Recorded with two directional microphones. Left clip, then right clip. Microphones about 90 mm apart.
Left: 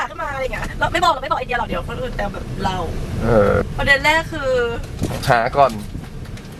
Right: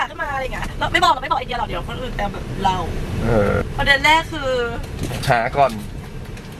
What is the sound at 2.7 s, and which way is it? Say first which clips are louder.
Speech: right 2 dB; 20° right (ahead or behind).